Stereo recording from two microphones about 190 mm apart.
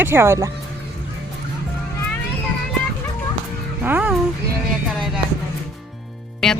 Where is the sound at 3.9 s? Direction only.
5° right (ahead or behind).